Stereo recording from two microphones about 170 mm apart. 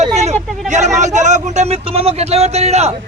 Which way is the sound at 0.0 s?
40° right (ahead or behind).